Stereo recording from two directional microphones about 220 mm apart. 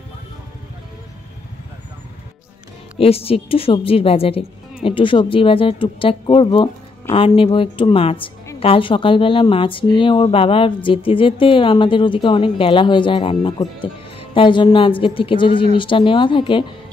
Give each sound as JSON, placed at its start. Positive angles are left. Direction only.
{"t": 3.0, "sound": "a woman's voice", "side_deg": 25}